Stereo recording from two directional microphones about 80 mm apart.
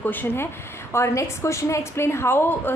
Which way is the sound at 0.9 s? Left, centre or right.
Left.